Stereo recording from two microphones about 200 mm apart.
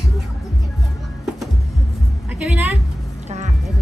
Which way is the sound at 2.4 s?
5° right (ahead or behind).